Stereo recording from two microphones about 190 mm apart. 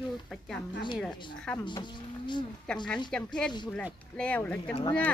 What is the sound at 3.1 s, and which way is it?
Speech, 5° left (ahead or behind).